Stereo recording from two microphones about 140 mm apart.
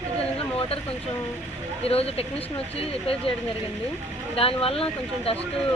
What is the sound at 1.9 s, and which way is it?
Speech, 45° left (ahead or behind).